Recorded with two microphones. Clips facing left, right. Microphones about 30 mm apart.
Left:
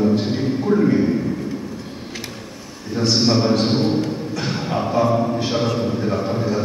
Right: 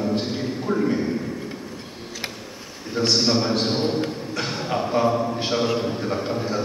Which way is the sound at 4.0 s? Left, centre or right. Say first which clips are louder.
Left 3 dB; right.